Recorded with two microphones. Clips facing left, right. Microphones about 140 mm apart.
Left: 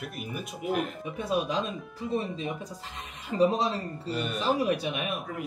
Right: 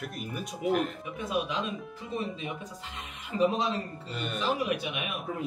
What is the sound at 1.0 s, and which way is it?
Speech, 35° left (ahead or behind).